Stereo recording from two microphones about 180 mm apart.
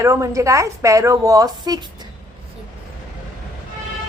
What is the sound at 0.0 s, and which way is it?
A woman's voice, 15° right (ahead or behind).